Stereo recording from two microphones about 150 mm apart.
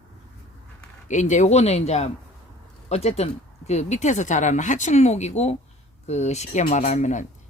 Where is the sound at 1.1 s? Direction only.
55° left (ahead or behind).